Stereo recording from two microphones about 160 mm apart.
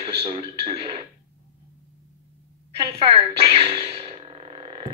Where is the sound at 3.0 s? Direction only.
35° right (ahead or behind).